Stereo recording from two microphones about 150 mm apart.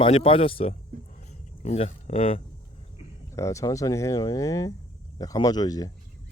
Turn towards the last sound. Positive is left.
turn(degrees=25)  # may be behind; listen again after turning